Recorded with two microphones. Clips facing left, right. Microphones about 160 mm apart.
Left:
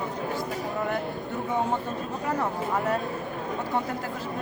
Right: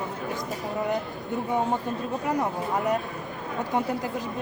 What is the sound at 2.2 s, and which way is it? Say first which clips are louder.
Speech: even; 15° right (ahead or behind).